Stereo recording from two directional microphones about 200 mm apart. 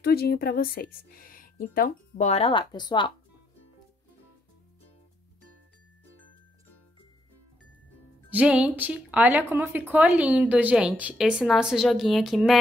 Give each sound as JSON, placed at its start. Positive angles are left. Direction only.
{"t": 0.0, "sound": "speech", "side_deg": 50}
{"t": 8.3, "sound": "a woman's voice", "side_deg": -5}